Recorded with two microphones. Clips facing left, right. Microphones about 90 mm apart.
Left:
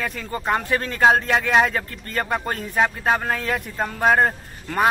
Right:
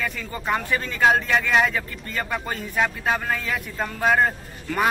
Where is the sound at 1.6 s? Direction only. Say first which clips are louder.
Left 1 dB; 50° left (ahead or behind).